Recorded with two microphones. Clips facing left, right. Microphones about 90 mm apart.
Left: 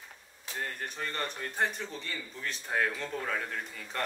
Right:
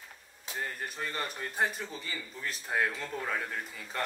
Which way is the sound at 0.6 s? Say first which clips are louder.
Even; 5° right (ahead or behind).